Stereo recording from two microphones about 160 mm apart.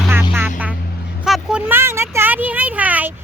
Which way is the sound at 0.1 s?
15° right (ahead or behind).